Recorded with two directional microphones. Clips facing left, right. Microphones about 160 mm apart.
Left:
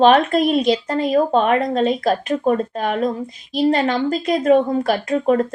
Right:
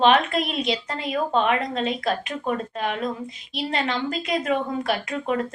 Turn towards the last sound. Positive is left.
turn(degrees=40)  # may be behind; listen again after turning